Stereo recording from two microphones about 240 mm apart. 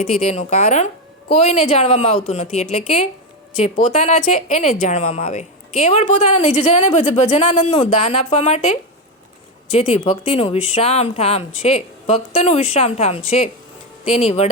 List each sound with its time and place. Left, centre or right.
0.0 s a woman's voice: left